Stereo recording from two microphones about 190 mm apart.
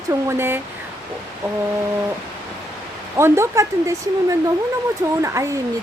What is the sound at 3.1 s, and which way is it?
Speech, 15° right (ahead or behind).